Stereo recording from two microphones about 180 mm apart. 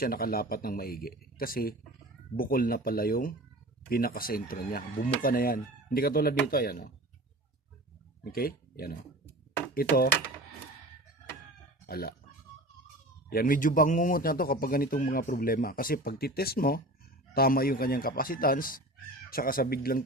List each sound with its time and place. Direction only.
0.0 s a man's voice: 55° left (ahead or behind)
8.2 s speech: 55° left (ahead or behind)
11.9 s speech: 60° left (ahead or behind)
13.3 s a man's voice: 50° left (ahead or behind)